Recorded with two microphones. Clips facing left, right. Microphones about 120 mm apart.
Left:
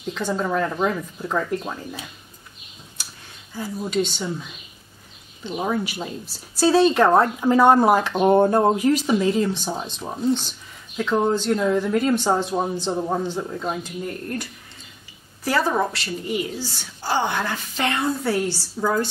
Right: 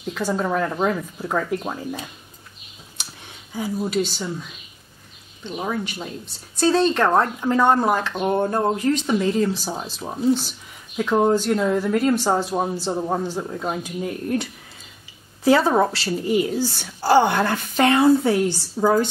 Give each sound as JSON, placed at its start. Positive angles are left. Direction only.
{"t": 0.0, "sound": "speech", "side_deg": -10}
{"t": 3.5, "sound": "speech", "side_deg": -10}
{"t": 15.4, "sound": "speech", "side_deg": -25}
{"t": 16.5, "sound": "speech", "side_deg": -45}
{"t": 18.2, "sound": "speech", "side_deg": -15}